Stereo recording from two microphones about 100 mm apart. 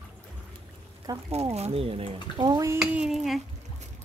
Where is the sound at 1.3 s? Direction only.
90° right; by 2.4 s 75° right (ahead or behind).